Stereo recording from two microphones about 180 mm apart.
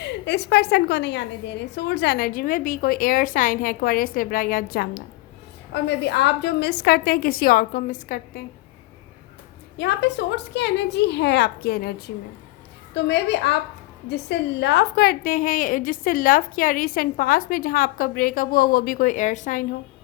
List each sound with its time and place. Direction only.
0.3 s a woman's voice: 65° left (ahead or behind)
5.7 s a woman's voice: 70° left (ahead or behind); by 8.4 s 50° left (ahead or behind)
9.7 s a woman's voice: 70° left (ahead or behind); by 19.6 s 45° left (ahead or behind)